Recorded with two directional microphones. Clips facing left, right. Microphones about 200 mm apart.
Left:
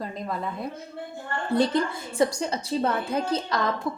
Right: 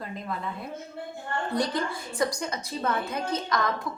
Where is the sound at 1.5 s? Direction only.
25° left (ahead or behind).